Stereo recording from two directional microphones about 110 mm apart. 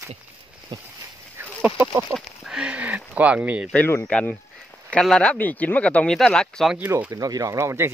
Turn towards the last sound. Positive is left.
turn(degrees=-25)  # may be behind; listen again after turning